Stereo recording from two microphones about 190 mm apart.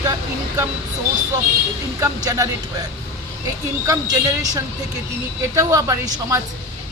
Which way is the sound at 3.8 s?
20° right (ahead or behind).